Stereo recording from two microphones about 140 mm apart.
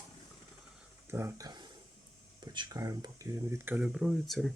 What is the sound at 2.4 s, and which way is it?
Speech, 30° right (ahead or behind).